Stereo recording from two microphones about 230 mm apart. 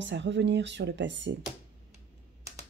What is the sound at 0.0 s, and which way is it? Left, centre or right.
Speech, right.